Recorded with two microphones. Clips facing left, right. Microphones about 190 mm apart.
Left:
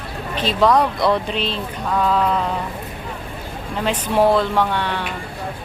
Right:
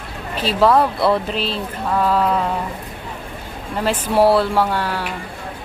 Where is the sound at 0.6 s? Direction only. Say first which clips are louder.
Right 1 dB; 5° right (ahead or behind).